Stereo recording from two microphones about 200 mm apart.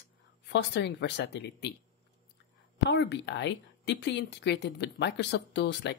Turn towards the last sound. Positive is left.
turn(degrees=60)  # may be behind; listen again after turning